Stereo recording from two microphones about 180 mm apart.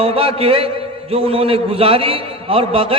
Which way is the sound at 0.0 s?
30° right (ahead or behind).